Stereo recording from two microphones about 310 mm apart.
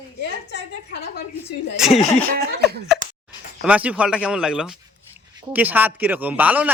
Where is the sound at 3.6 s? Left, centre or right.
Centre.